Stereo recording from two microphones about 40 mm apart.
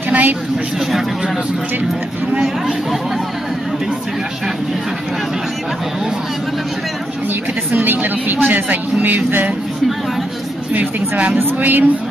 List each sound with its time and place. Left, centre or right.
0.1 s a sound: right
2.4 s speech: centre
7.7 s a woman's voice: right
10.7 s speech: right
11.6 s a woman's voice: right